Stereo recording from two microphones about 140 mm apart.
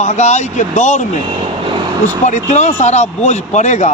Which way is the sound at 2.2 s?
55° left (ahead or behind).